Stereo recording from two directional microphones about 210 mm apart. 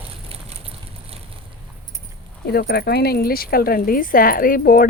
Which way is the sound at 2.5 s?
50° left (ahead or behind).